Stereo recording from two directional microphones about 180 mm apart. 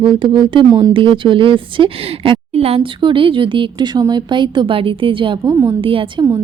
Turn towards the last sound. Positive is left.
turn(degrees=-30)  # may be behind; listen again after turning